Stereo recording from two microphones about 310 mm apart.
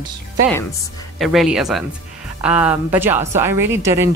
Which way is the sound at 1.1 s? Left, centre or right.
Centre.